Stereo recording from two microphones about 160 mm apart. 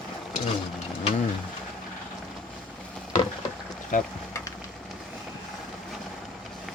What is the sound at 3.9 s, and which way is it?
Speech, 55° left (ahead or behind).